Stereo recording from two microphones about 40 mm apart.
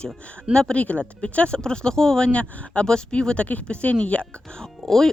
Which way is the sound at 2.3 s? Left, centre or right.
Left.